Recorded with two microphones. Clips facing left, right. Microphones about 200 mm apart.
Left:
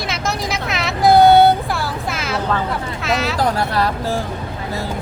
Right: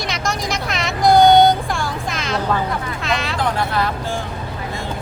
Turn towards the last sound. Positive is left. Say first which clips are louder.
# left 2 dB
turn(degrees=35)  # may be behind; listen again after turning